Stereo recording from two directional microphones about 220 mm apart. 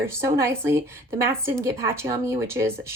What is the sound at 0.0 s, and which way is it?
Speech, 10° right (ahead or behind).